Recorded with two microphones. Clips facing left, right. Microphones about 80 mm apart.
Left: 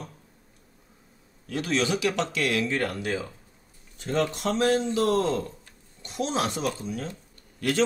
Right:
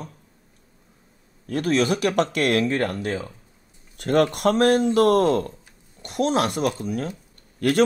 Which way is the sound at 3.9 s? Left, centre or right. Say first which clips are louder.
Right 7 dB; right.